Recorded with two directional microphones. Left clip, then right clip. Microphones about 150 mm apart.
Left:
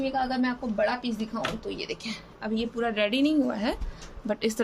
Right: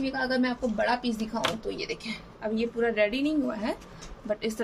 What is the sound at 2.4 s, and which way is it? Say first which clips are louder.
A woman's voice: right 2 dB; 50° left (ahead or behind).